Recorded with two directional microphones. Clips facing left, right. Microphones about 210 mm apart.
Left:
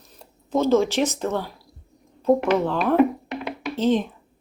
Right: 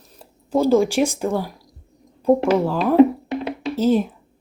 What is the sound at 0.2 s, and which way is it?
Speech, 10° right (ahead or behind).